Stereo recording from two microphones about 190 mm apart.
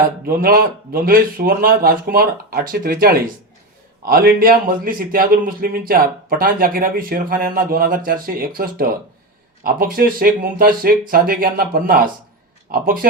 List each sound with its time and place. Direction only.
0.3 s a man's voice: 50° right (ahead or behind)